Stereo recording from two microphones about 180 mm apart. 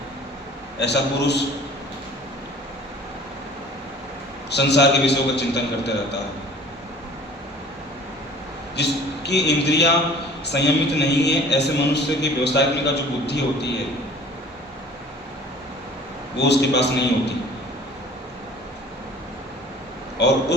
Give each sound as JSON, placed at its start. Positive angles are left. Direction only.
{"t": 0.8, "sound": "a man's voice", "side_deg": 70}
{"t": 4.4, "sound": "a man's voice", "side_deg": 70}
{"t": 8.7, "sound": "a man's voice", "side_deg": 70}
{"t": 16.4, "sound": "a man's voice", "side_deg": 70}
{"t": 20.2, "sound": "speech", "side_deg": 70}